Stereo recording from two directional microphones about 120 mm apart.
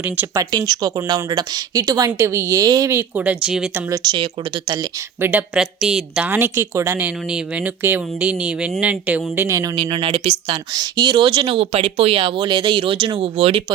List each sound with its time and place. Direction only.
0.3 s speech: 30° right (ahead or behind); by 3.7 s 5° right (ahead or behind)
3.8 s speech: 30° right (ahead or behind)
5.2 s a woman's voice: 15° right (ahead or behind)
5.5 s a woman's voice: 5° right (ahead or behind)
9.7 s speech: 45° right (ahead or behind)
10.7 s speech: 35° right (ahead or behind); by 13.7 s 55° right (ahead or behind)